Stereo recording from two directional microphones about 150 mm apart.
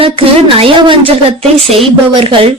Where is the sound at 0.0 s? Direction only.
40° right (ahead or behind).